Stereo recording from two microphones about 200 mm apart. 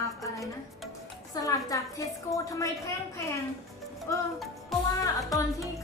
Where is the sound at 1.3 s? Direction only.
15° left (ahead or behind).